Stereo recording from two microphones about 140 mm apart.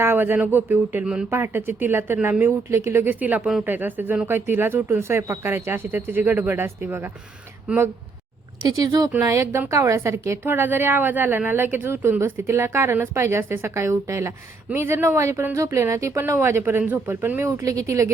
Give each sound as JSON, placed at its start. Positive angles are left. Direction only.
{"t": 0.0, "sound": "a woman's voice", "side_deg": -15}
{"t": 8.6, "sound": "a woman's voice", "side_deg": -25}